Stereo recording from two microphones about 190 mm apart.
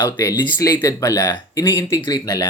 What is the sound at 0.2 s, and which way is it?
Speech, 15° left (ahead or behind).